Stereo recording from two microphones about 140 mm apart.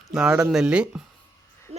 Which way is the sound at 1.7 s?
45° right (ahead or behind).